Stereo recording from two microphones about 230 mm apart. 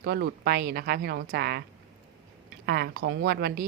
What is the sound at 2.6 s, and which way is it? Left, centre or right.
A woman's voice, right.